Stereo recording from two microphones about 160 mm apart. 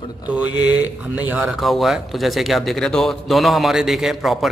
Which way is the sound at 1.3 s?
Centre (ahead or behind).